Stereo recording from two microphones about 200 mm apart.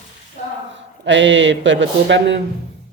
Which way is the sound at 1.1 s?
65° right (ahead or behind).